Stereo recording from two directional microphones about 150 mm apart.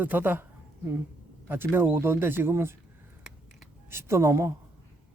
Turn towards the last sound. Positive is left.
turn(degrees=-20)  # may be behind; listen again after turning